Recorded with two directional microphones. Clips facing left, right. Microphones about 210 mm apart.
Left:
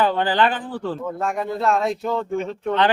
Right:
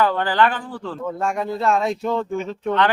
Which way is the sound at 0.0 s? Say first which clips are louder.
Even; 25° left (ahead or behind).